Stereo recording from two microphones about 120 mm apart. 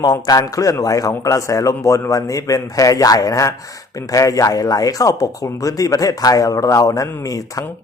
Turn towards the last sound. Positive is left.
turn(degrees=30)  # may be behind; listen again after turning